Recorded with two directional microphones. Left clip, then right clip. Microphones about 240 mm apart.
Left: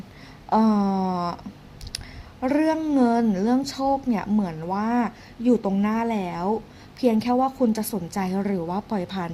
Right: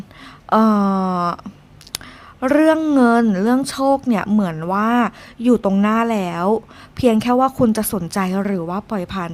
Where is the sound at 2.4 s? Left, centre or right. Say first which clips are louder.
Right 8 dB; centre.